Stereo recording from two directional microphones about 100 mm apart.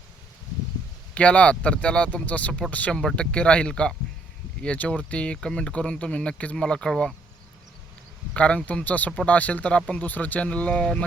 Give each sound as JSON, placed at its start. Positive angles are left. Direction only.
{"t": 1.1, "sound": "speech", "side_deg": 10}
{"t": 8.3, "sound": "speech", "side_deg": 10}